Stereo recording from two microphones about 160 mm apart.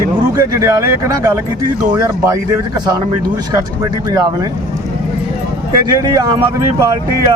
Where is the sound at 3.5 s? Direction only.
25° right (ahead or behind).